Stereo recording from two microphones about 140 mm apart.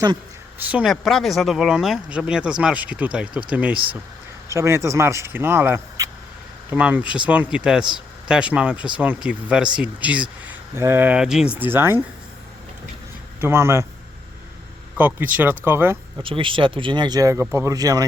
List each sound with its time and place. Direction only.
0.6 s speech: 10° right (ahead or behind)
0.9 s speech: centre (ahead or behind)
4.4 s speech: 20° right (ahead or behind)
13.4 s speech: 20° right (ahead or behind)
14.9 s speech: 10° right (ahead or behind)
16.2 s speech: 40° right (ahead or behind)